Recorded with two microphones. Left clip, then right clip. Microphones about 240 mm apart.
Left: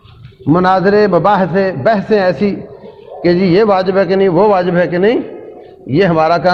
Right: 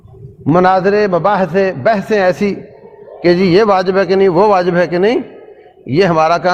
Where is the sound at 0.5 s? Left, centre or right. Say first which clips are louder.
Even; right.